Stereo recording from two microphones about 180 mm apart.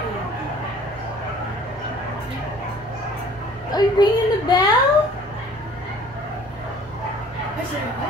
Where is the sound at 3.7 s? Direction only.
20° left (ahead or behind).